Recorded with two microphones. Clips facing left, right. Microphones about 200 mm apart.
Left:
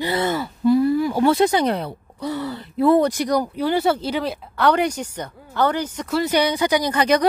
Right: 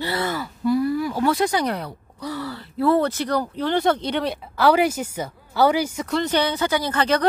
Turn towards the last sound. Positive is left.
turn(degrees=15)  # may be behind; listen again after turning